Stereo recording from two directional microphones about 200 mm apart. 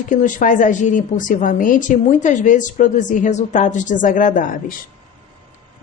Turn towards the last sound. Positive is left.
turn(degrees=45)  # may be behind; listen again after turning